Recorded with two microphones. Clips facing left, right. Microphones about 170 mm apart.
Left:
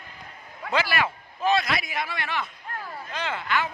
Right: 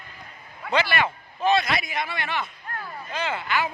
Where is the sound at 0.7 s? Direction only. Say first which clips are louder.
Right 2 dB; centre (ahead or behind).